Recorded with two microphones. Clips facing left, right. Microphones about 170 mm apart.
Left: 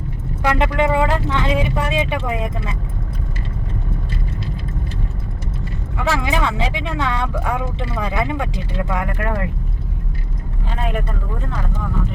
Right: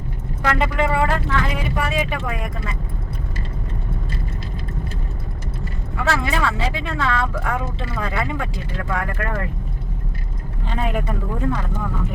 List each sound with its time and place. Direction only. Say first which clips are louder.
0.4 s speech: left 3 dB; 15° left (ahead or behind)
6.0 s speech: left 1 dB; 15° left (ahead or behind)
10.7 s speech: right 1 dB; centre (ahead or behind)